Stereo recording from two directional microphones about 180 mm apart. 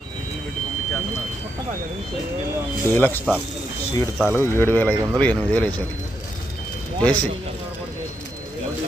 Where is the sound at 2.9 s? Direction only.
10° left (ahead or behind).